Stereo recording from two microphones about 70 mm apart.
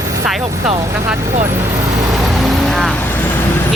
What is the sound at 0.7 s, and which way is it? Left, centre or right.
Speech, right.